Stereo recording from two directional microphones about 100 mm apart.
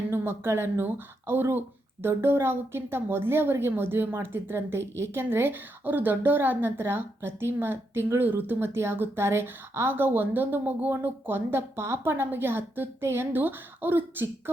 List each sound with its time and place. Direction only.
0.1 s speech: 25° right (ahead or behind)